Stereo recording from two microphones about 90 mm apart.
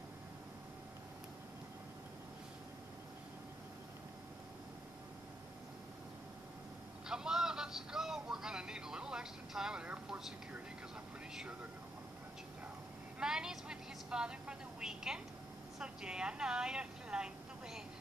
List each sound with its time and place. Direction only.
7.1 s vehicle: 5° right (ahead or behind)
13.2 s a woman's voice: 10° right (ahead or behind)